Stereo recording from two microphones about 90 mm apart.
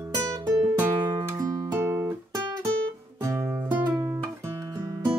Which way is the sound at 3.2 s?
30° right (ahead or behind).